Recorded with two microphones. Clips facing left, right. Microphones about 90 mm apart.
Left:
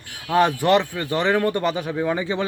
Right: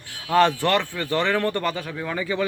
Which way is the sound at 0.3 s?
15° left (ahead or behind).